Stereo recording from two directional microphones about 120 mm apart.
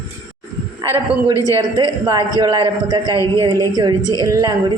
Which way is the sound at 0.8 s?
25° right (ahead or behind).